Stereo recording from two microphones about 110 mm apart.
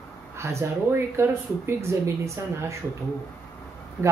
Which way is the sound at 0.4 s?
25° right (ahead or behind).